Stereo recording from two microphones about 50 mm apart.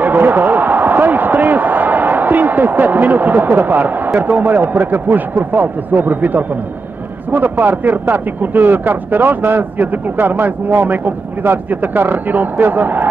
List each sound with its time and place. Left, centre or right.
0.0 s speech: right